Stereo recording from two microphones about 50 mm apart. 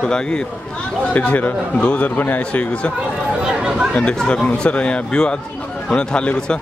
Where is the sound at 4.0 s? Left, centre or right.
Centre.